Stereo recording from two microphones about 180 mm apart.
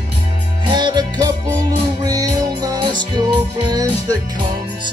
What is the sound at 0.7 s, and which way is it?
Music, 25° right (ahead or behind).